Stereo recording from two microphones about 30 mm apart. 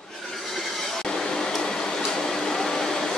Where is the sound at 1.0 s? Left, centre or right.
Centre.